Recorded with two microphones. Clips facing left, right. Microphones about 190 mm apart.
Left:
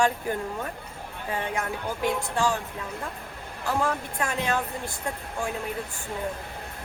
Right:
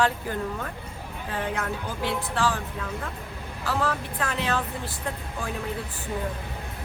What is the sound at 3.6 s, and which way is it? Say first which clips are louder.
Speech: left 1 dB; 15° left (ahead or behind).